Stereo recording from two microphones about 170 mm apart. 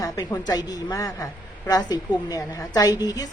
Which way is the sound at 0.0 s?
20° left (ahead or behind).